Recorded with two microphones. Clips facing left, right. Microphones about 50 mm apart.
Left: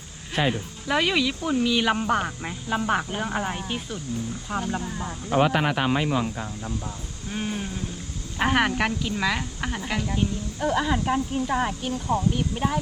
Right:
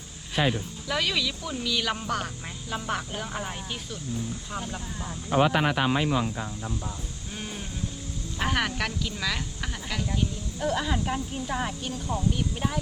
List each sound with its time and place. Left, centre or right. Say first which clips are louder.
0.4 s speech: left 1 dB; left
0.9 s speech: left 5 dB; left
5.3 s speech: left 1 dB; left
7.3 s speech: left 8 dB; left